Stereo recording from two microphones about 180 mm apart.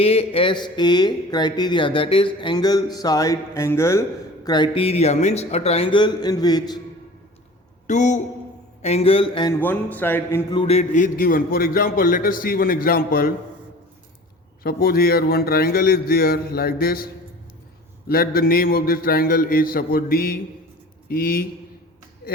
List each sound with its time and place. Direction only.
0.0 s a man's voice: 35° left (ahead or behind)
7.9 s a man's voice: 40° left (ahead or behind); by 9.6 s 25° left (ahead or behind)
9.6 s speech: 10° left (ahead or behind)
10.5 s a man's voice: 30° left (ahead or behind); by 13.3 s 55° left (ahead or behind)
14.6 s a man's voice: 55° left (ahead or behind)
18.1 s a man's voice: 55° left (ahead or behind)